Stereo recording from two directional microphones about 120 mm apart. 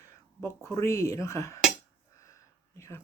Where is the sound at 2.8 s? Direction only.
25° left (ahead or behind).